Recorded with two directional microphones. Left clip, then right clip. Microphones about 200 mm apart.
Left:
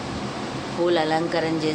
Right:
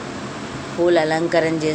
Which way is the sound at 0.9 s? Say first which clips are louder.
Right 5 dB; 15° right (ahead or behind).